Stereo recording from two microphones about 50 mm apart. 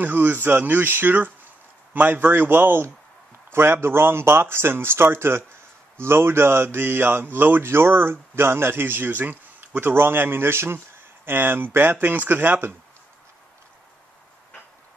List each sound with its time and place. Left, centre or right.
0.0 s speech: right
9.8 s speech: right